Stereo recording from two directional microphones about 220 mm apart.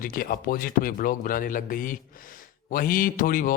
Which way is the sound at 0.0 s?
40° left (ahead or behind).